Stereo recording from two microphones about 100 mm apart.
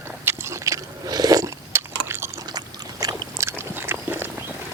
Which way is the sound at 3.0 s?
40° right (ahead or behind).